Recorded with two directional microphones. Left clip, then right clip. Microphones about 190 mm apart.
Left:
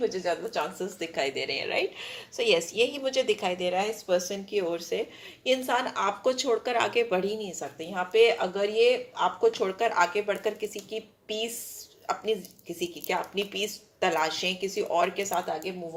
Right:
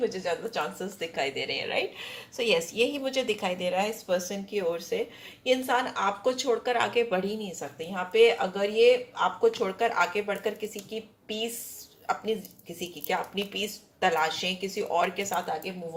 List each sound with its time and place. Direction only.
0.8 s speech: 45° left (ahead or behind)